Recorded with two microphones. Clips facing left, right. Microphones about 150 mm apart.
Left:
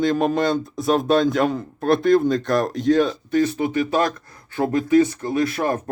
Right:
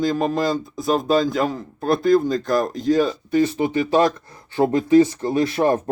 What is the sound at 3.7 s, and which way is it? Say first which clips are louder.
Speech: right 4 dB; 30° right (ahead or behind).